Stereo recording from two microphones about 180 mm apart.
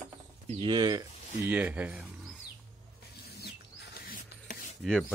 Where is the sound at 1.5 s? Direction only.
10° right (ahead or behind).